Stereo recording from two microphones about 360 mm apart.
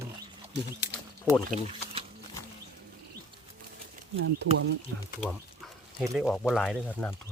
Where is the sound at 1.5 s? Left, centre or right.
Centre.